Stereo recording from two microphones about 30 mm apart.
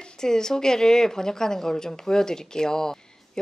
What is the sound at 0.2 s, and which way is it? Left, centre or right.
A woman's voice, left.